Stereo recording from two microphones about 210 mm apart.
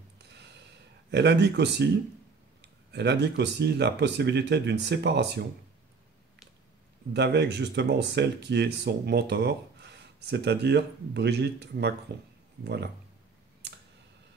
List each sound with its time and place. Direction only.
0.2 s a sound: 55° right (ahead or behind)
1.1 s speech: 55° right (ahead or behind)
2.9 s speech: 55° right (ahead or behind)
7.2 s speech: 55° right (ahead or behind)
13.6 s computer keyboard: 55° right (ahead or behind)